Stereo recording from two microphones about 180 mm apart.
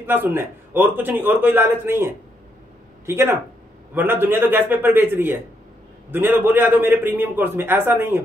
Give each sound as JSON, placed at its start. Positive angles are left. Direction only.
{"t": 0.0, "sound": "a man's voice", "side_deg": -10}